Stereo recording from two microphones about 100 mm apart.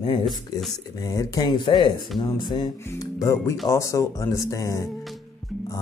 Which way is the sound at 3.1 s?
30° left (ahead or behind).